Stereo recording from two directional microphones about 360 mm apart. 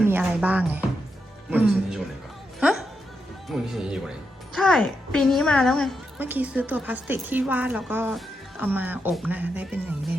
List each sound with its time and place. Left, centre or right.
0.0 s speech: centre
2.6 s music: centre
3.5 s a woman's voice: centre